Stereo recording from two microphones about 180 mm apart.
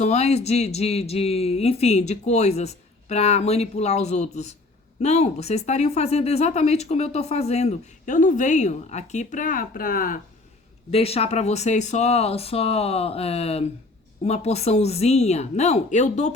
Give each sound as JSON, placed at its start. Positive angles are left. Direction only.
{"t": 0.0, "sound": "speech", "side_deg": 35}
{"t": 10.9, "sound": "speech", "side_deg": 35}